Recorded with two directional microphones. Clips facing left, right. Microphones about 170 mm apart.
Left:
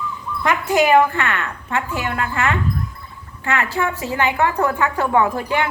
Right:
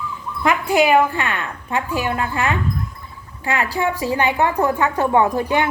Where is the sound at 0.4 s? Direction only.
15° right (ahead or behind).